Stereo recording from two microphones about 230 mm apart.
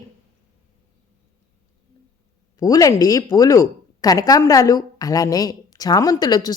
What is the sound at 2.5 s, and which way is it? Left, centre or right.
A woman's voice, centre.